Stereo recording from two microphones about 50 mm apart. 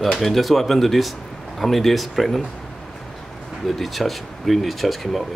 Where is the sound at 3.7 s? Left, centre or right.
Centre.